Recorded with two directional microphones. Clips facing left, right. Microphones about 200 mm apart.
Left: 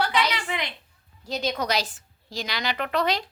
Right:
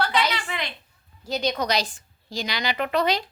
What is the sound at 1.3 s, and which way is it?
A woman's voice, centre (ahead or behind).